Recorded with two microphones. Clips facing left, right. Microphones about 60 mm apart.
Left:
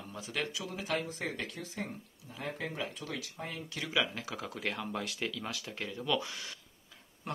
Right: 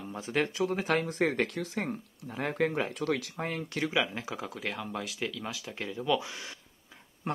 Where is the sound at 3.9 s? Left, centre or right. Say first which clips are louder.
Left 1 dB; centre.